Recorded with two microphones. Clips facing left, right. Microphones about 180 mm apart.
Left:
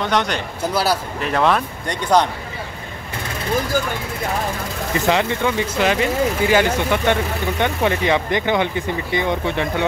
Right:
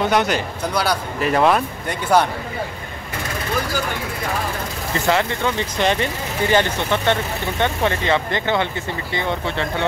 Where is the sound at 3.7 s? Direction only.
50° left (ahead or behind).